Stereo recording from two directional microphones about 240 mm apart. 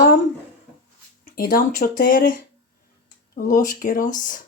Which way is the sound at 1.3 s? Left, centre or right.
Left.